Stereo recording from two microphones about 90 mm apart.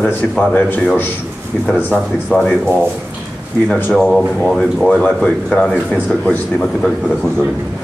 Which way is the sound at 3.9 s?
Centre (ahead or behind).